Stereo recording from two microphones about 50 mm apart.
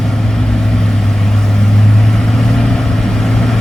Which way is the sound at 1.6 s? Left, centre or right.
Centre.